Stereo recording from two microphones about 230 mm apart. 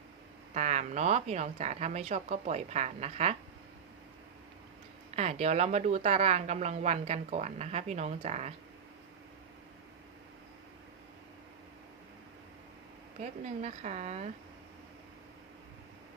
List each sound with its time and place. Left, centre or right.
0.5 s a woman's voice: right
5.1 s a woman's voice: right
13.4 s a woman's voice: right